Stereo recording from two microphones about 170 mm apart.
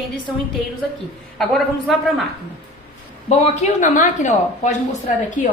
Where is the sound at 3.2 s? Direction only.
45° left (ahead or behind).